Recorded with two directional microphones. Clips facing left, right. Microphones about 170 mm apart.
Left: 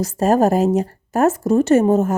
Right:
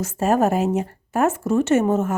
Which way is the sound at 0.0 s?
35° left (ahead or behind).